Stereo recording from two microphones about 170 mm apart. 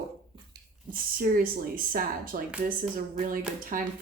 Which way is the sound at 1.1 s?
55° right (ahead or behind).